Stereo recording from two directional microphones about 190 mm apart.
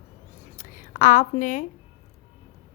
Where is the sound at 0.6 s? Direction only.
45° left (ahead or behind).